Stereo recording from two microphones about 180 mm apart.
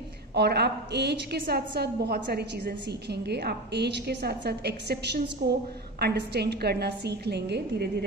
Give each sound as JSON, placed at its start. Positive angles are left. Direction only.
{"t": 0.3, "sound": "a woman's voice", "side_deg": -65}